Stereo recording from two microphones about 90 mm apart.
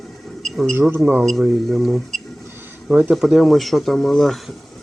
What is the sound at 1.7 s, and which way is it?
Speech, 5° right (ahead or behind).